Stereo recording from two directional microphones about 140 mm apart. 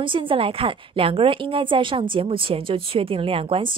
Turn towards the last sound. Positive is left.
turn(degrees=-40)  # may be behind; listen again after turning